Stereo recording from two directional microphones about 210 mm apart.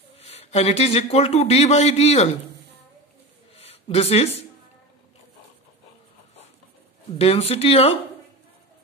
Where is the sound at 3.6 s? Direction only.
30° left (ahead or behind).